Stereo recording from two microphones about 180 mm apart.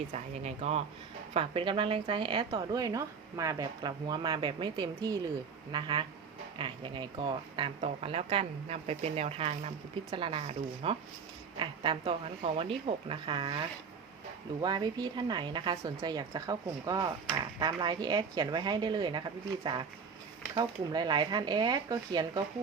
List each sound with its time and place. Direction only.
0.1 s a woman's voice: 35° right (ahead or behind)